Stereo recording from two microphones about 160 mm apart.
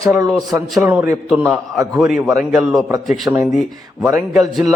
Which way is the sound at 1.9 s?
Centre (ahead or behind).